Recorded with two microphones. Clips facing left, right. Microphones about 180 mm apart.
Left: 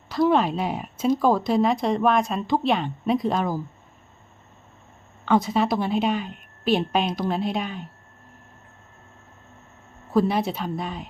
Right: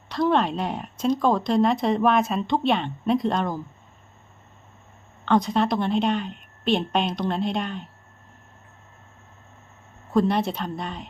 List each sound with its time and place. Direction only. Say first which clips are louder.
0.1 s speech: left 2 dB; 5° left (ahead or behind)
5.2 s speech: even; 5° left (ahead or behind)
10.1 s speech: even; 5° left (ahead or behind)